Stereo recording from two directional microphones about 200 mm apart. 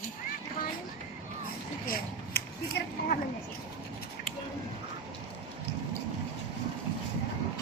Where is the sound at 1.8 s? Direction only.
45° left (ahead or behind).